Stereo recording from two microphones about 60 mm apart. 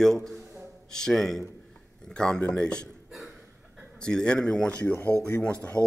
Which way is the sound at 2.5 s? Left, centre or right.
Centre.